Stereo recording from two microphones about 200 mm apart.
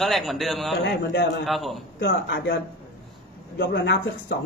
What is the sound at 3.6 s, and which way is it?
Speech, 60° left (ahead or behind).